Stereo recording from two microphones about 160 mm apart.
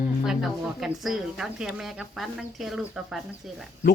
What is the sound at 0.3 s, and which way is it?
A woman's voice, centre (ahead or behind).